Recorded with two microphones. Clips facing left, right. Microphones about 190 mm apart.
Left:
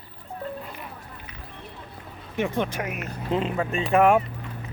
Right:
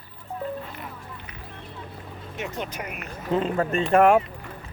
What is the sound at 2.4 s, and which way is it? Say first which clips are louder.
Speech: left 7 dB; 55° left (ahead or behind).